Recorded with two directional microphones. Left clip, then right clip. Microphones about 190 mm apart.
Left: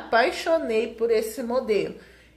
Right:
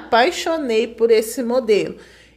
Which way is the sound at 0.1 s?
40° right (ahead or behind).